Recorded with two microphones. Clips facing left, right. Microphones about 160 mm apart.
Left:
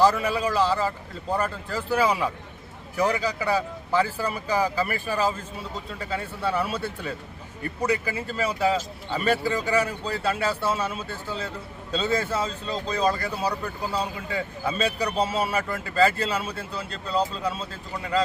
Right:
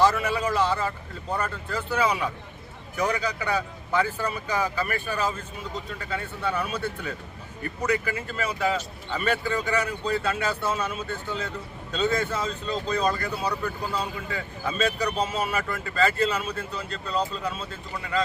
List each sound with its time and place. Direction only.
0.0 s speech: 35° left (ahead or behind)